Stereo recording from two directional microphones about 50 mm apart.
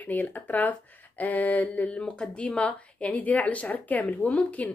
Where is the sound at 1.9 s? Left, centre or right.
Centre.